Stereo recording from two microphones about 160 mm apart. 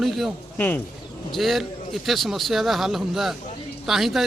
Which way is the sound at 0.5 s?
10° left (ahead or behind).